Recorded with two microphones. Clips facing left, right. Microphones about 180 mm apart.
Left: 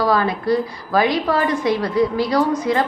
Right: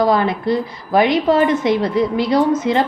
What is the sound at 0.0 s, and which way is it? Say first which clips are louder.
A woman's voice: right 3 dB; 20° right (ahead or behind).